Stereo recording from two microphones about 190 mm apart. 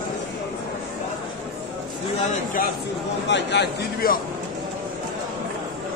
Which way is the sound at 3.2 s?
65° left (ahead or behind).